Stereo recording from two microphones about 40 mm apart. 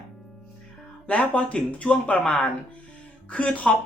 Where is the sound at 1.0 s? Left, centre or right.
Left.